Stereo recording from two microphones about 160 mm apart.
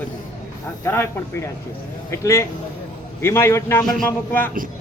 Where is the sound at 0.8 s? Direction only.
15° left (ahead or behind).